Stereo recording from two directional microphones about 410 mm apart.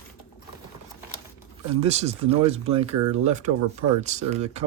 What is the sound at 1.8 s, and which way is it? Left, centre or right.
Speech, centre.